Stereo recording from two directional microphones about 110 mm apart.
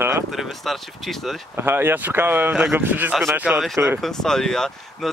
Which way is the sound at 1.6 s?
20° right (ahead or behind).